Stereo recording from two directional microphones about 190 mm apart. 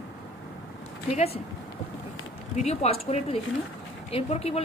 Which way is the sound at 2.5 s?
35° left (ahead or behind).